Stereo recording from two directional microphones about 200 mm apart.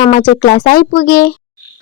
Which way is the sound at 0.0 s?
40° left (ahead or behind).